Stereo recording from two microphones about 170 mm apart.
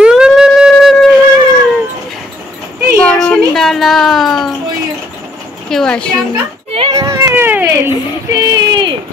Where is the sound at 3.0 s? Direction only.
5° left (ahead or behind).